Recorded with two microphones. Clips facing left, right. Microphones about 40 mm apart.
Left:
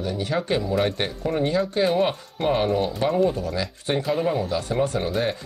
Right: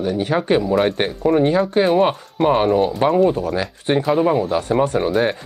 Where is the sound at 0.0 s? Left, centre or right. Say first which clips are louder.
Right 6 dB; right.